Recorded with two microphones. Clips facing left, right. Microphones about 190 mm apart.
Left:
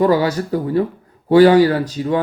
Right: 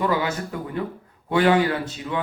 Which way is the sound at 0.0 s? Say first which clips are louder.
Left 8 dB; 35° left (ahead or behind).